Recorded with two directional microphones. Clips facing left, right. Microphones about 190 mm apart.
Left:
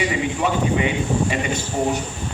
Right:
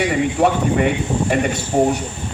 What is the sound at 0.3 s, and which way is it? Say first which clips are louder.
A man's voice: right 4 dB; 60° right (ahead or behind).